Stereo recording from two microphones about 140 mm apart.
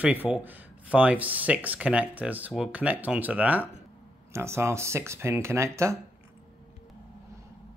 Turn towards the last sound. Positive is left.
turn(degrees=-20)  # may be behind; listen again after turning